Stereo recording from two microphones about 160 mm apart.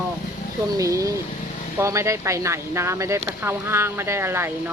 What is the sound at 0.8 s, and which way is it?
Speech, 20° right (ahead or behind).